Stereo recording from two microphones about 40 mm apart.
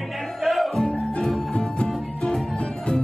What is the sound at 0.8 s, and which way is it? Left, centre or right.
Music, left.